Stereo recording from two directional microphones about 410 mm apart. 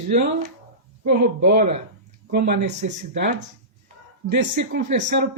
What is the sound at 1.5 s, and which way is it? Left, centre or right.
Speech, centre.